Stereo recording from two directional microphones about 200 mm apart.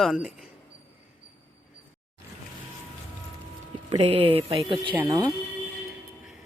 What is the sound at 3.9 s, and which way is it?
Speech, 30° right (ahead or behind).